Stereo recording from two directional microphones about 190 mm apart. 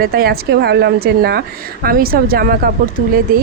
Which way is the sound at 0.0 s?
55° right (ahead or behind).